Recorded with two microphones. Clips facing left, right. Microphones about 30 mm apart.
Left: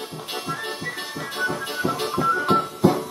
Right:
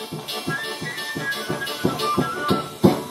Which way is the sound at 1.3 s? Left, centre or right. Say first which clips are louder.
Left 2 dB; right.